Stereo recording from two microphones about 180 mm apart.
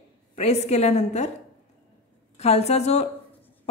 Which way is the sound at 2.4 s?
35° left (ahead or behind).